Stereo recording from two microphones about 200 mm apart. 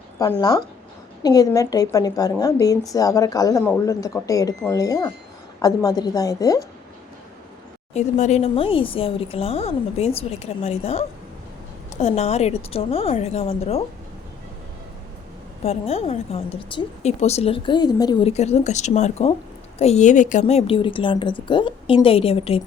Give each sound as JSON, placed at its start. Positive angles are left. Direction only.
{"t": 0.2, "sound": "a woman's voice", "side_deg": 20}
{"t": 7.9, "sound": "speech", "side_deg": 35}
{"t": 15.6, "sound": "a woman's voice", "side_deg": 30}
{"t": 18.3, "sound": "a woman's voice", "side_deg": 30}